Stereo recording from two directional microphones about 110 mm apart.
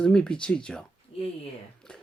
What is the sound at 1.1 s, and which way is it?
Speech, 65° left (ahead or behind).